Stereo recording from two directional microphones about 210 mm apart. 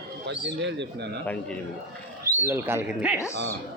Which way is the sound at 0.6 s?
55° right (ahead or behind).